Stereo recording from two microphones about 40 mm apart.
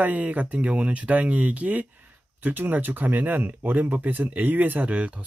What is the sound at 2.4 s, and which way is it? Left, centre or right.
Speech, right.